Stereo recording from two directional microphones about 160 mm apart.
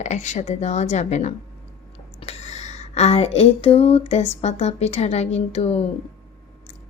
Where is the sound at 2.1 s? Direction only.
45° left (ahead or behind).